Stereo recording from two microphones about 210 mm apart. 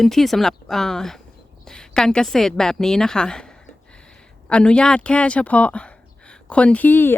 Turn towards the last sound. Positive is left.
turn(degrees=10)  # may be behind; listen again after turning